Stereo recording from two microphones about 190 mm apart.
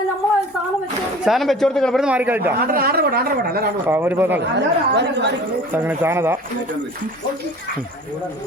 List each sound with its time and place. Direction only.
1.2 s a man's voice: centre (ahead or behind)
2.6 s speech: 55° right (ahead or behind)
3.8 s speech: 10° right (ahead or behind)
4.4 s speech: 65° right (ahead or behind)
5.7 s speech: 10° right (ahead or behind)